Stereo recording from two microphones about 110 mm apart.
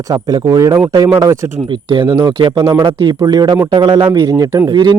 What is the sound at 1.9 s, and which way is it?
Speech, 45° right (ahead or behind).